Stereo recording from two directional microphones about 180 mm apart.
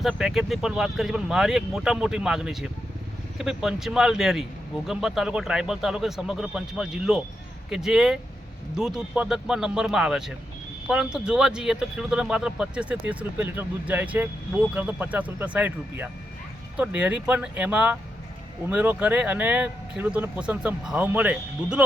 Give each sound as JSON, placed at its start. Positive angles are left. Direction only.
{"t": 0.0, "sound": "speech", "side_deg": 0}